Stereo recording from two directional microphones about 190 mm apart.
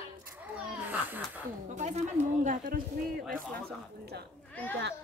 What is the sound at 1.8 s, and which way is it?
Speech, 40° right (ahead or behind).